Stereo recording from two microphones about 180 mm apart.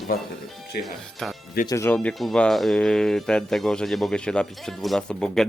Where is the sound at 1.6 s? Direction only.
15° left (ahead or behind).